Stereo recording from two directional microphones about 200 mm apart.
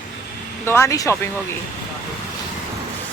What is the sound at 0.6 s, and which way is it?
Speech, 15° left (ahead or behind).